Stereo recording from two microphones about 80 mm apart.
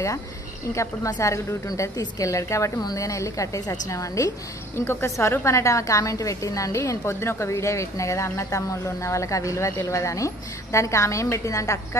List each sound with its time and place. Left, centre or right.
1.2 s a woman's voice: left
1.7 s a woman's voice: left